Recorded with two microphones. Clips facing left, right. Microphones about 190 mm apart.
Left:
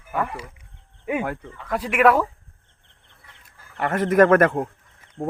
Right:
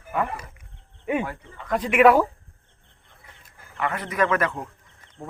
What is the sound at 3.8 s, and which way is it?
A man's voice, 45° left (ahead or behind).